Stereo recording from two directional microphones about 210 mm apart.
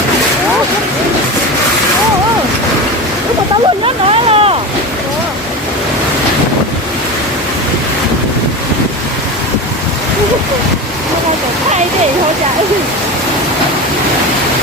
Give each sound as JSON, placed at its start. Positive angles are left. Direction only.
{"t": 3.8, "sound": "vehicle", "side_deg": -25}